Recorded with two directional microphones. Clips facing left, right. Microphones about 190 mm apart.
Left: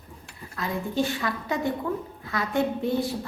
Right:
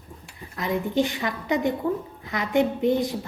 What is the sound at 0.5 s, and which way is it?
A woman's voice, 20° right (ahead or behind).